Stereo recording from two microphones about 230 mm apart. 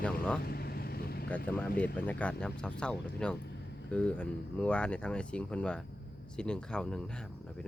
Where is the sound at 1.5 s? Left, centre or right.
Centre.